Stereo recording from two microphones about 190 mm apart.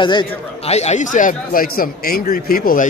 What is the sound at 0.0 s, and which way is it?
Speech, 25° left (ahead or behind).